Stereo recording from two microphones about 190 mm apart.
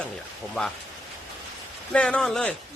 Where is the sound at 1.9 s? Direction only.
5° left (ahead or behind).